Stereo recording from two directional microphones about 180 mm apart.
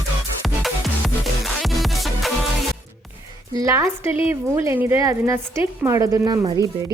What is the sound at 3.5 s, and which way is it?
Speech, 20° right (ahead or behind).